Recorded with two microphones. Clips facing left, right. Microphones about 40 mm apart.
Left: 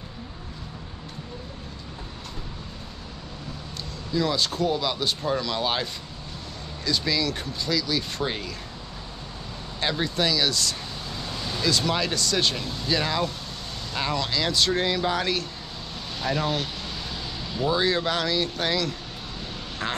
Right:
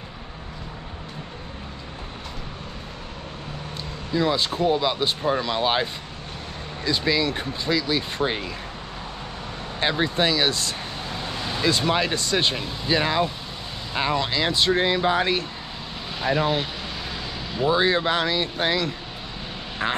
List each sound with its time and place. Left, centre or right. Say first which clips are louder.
4.1 s speech: right 2 dB; right
9.8 s speech: right 3 dB; right